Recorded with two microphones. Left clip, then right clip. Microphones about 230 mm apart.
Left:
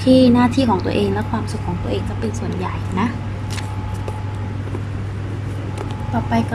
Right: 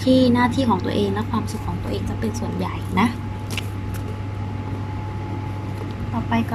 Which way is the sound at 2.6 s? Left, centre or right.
Centre.